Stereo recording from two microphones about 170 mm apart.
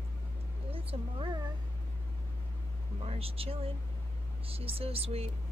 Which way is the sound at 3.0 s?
35° right (ahead or behind).